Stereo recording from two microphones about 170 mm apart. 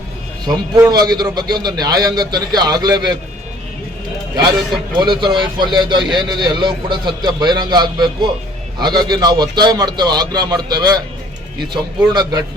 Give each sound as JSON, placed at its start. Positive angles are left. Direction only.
{"t": 0.4, "sound": "a man's voice", "side_deg": -20}
{"t": 4.9, "sound": "a man's voice", "side_deg": -25}